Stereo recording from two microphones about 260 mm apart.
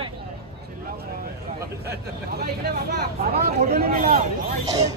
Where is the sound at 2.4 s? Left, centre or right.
Right.